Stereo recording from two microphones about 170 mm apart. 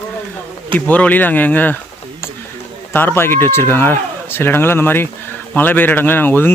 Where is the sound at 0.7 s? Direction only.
10° left (ahead or behind).